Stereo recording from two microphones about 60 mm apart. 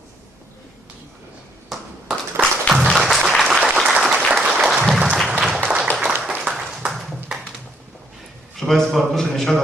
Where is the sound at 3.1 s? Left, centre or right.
Centre.